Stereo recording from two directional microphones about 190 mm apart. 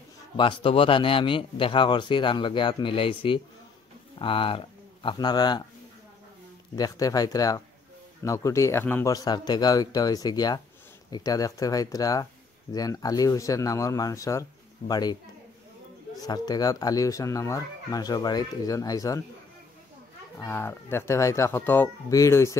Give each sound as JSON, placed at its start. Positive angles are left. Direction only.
{"t": 0.4, "sound": "speech", "side_deg": 25}
{"t": 6.7, "sound": "speech", "side_deg": 20}
{"t": 16.2, "sound": "speech", "side_deg": 20}
{"t": 20.3, "sound": "speech", "side_deg": 15}